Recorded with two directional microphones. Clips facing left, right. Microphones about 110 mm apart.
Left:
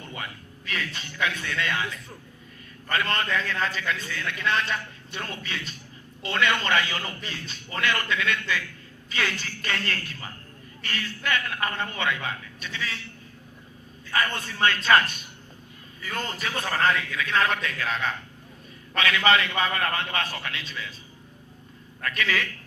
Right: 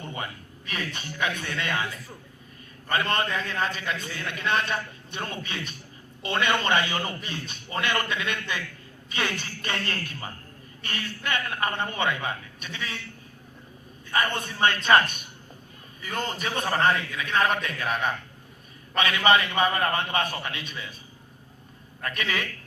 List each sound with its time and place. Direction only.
0.0 s a sound: 25° right (ahead or behind)
0.9 s a man's voice: 25° right (ahead or behind)
2.9 s a man's voice: 25° right (ahead or behind)
14.1 s a man's voice: 20° right (ahead or behind)
22.0 s a man's voice: 20° right (ahead or behind)